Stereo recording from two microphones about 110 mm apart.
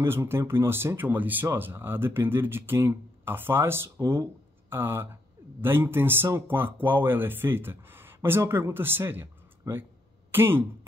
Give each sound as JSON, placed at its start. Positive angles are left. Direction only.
{"t": 0.0, "sound": "speech", "side_deg": -20}